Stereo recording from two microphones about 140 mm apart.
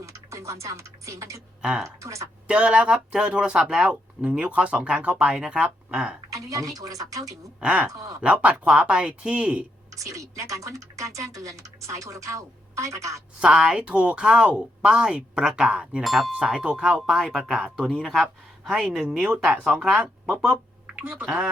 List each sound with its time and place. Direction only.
0.0 s speech: 20° right (ahead or behind)
1.6 s speech: 5° right (ahead or behind)
2.0 s speech: 20° right (ahead or behind)
2.5 s speech: 10° right (ahead or behind)
6.3 s speech: 25° right (ahead or behind)
7.6 s speech: 10° right (ahead or behind)
7.9 s speech: 25° right (ahead or behind)
8.2 s speech: 10° right (ahead or behind)
9.9 s speech: 20° right (ahead or behind)
13.4 s speech: 5° right (ahead or behind)